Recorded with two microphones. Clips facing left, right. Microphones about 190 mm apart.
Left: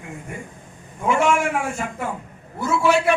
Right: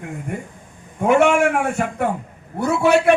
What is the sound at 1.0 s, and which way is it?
A man's voice, 65° right (ahead or behind).